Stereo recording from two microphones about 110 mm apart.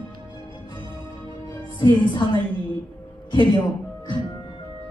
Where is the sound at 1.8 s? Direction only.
40° left (ahead or behind).